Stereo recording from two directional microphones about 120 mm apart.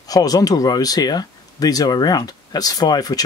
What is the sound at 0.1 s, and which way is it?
Speech, 30° left (ahead or behind).